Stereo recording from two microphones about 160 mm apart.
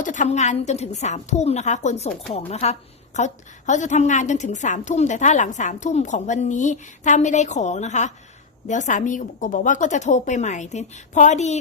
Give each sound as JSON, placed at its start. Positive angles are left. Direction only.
{"t": 0.0, "sound": "a woman's voice", "side_deg": 50}